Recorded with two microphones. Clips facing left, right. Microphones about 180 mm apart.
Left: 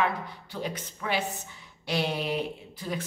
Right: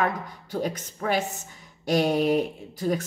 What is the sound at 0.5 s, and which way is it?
A woman's voice, 45° right (ahead or behind).